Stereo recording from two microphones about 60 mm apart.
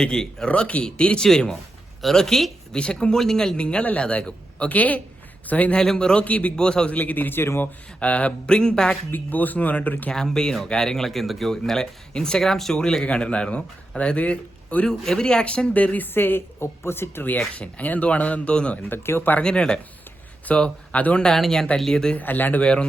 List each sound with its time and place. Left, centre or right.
0.0 s speech: centre
5.8 s speech: centre
6.2 s speech: left
7.9 s speech: left
9.1 s speech: left
10.1 s speech: centre
14.8 s speech: centre; by 17.4 s left
17.5 s speech: left
18.9 s speech: left
19.4 s speech: centre
20.5 s speech: left
21.3 s speech: centre
22.1 s speech: left
22.6 s speech: centre